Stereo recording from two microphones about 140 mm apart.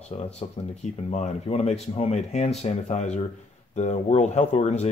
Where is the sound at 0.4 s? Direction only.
45° left (ahead or behind).